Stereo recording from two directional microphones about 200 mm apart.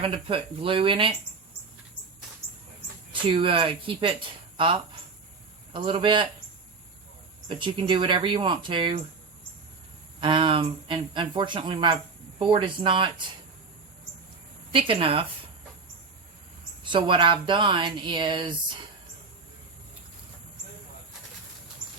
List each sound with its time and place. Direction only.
0.0 s speech: 25° right (ahead or behind)
3.1 s speech: 25° right (ahead or behind)
7.4 s speech: 25° right (ahead or behind)
10.2 s speech: 25° right (ahead or behind)
14.7 s speech: 25° right (ahead or behind)
16.8 s speech: 25° right (ahead or behind)